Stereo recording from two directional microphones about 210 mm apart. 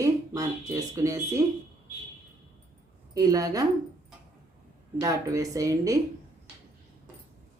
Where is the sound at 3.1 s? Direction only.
15° right (ahead or behind).